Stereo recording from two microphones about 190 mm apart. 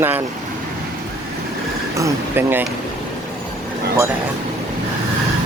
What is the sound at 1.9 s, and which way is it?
Speech, 15° right (ahead or behind).